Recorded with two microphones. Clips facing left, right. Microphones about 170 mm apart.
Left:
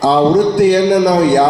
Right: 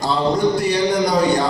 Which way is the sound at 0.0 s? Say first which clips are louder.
Left 7 dB; 90° left.